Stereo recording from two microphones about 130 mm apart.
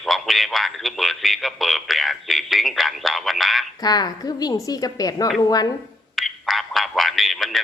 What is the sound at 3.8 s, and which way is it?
A woman's voice, 30° left (ahead or behind).